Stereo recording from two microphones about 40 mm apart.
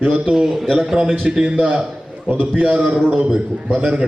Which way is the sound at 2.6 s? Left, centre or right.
Right.